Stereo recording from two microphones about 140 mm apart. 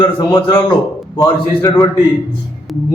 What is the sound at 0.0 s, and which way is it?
A man's voice, 35° left (ahead or behind).